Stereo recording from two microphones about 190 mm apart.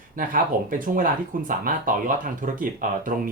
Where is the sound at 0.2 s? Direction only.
45° right (ahead or behind).